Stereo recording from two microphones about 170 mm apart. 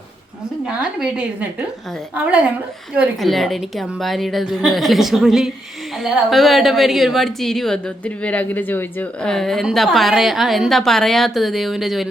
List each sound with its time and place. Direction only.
0.6 s a woman's voice: 5° right (ahead or behind)